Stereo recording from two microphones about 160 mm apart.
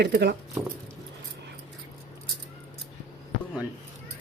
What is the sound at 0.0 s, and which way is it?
Speech, 90° right.